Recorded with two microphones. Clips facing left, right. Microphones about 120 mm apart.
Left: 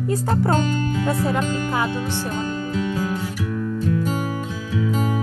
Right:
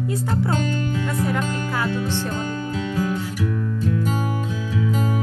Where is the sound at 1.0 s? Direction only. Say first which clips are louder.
Left 4 dB; 25° left (ahead or behind).